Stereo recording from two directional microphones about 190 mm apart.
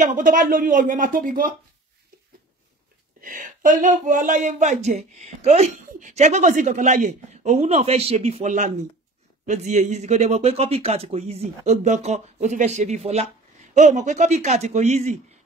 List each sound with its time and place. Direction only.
0.0 s speech: 45° right (ahead or behind)
3.2 s speech: 45° right (ahead or behind)